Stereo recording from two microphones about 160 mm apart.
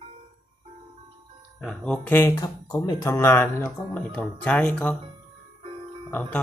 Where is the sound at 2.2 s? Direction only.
15° left (ahead or behind).